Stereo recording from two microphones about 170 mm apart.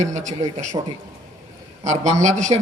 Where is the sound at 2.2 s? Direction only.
45° right (ahead or behind).